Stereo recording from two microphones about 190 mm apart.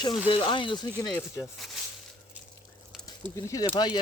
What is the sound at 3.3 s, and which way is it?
Speech, 20° left (ahead or behind).